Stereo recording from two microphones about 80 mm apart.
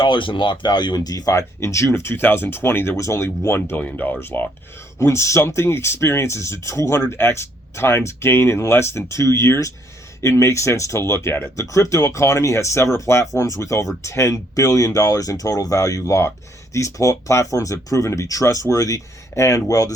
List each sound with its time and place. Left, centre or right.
0.0 s speech: left